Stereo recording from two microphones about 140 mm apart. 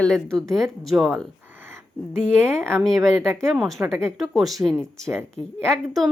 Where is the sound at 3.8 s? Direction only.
20° right (ahead or behind).